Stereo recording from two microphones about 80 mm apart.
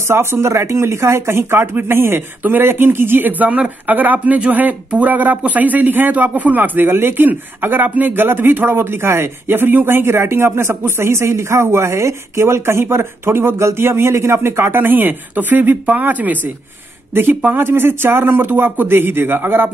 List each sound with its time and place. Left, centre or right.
0.1 s speech: right